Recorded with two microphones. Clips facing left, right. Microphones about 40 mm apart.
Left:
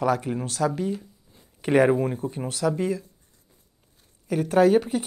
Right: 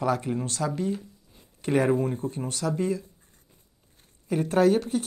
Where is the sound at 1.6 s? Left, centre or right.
Left.